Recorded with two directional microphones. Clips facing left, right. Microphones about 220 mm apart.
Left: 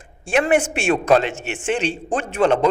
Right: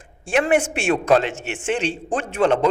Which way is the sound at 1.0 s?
15° left (ahead or behind).